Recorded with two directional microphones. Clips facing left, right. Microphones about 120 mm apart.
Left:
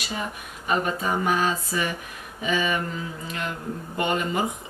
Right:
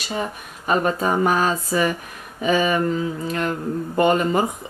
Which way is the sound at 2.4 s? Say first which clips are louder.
Right 6 dB; 45° right (ahead or behind).